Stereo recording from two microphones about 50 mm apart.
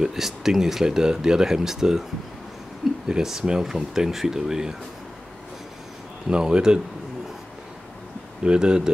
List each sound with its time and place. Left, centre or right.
0.0 s speech: centre
3.1 s speech: centre
6.2 s speech: centre
8.5 s speech: centre